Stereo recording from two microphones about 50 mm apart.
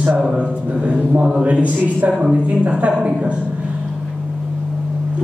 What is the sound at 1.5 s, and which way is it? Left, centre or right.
A woman's voice, right.